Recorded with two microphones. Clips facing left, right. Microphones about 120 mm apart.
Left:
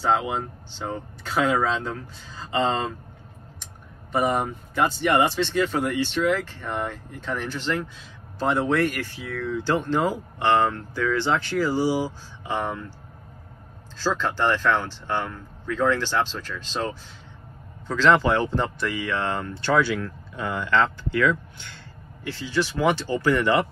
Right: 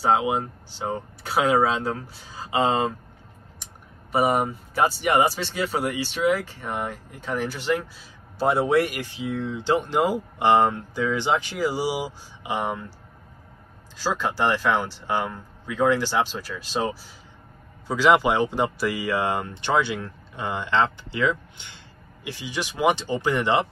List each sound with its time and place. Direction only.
0.0 s speech: 10° right (ahead or behind)
4.1 s speech: 5° right (ahead or behind)
13.9 s speech: 15° right (ahead or behind)